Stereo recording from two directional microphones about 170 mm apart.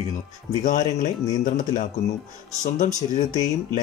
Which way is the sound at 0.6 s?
45° left (ahead or behind).